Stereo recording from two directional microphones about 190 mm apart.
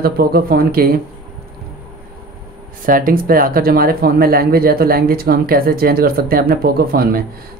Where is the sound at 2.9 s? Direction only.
45° right (ahead or behind).